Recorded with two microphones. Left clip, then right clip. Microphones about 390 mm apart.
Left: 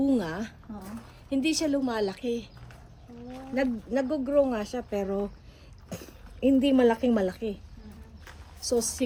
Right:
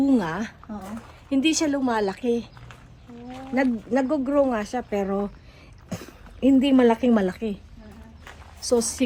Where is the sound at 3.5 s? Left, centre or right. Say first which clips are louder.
Right 5 dB; centre.